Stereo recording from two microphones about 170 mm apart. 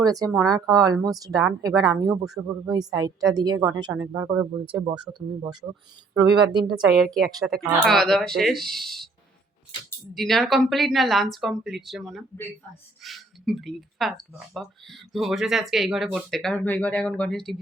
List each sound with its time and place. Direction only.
0.0 s speech: 20° right (ahead or behind)
7.0 s speech: centre (ahead or behind)
9.7 s speech: 25° left (ahead or behind)
10.2 s speech: centre (ahead or behind)